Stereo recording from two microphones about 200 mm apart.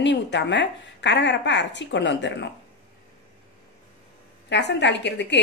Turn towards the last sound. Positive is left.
turn(degrees=60)  # may be behind; listen again after turning